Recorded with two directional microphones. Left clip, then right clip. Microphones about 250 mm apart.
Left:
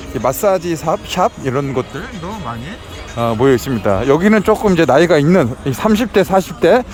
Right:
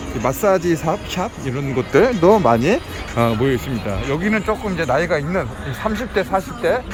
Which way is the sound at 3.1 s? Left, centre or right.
Centre.